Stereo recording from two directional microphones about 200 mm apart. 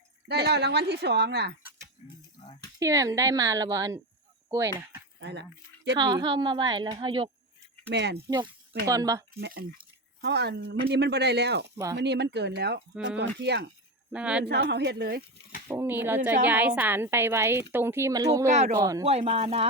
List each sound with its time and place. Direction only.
0.3 s speech: 55° right (ahead or behind)
2.7 s a woman's voice: 15° right (ahead or behind)
5.2 s speech: 60° right (ahead or behind)
6.0 s a woman's voice: 20° right (ahead or behind)
7.9 s speech: 60° right (ahead or behind)
8.9 s a woman's voice: 15° right (ahead or behind)
9.4 s speech: 50° right (ahead or behind)
14.1 s speech: 5° right (ahead or behind)
14.4 s speech: 55° right (ahead or behind)
15.6 s a woman's voice: 10° right (ahead or behind)
18.4 s speech: 35° right (ahead or behind)
18.8 s a woman's voice: 15° right (ahead or behind)
19.0 s speech: 30° right (ahead or behind)